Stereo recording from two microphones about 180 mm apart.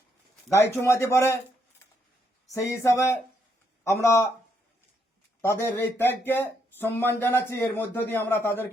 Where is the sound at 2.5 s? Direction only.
15° left (ahead or behind).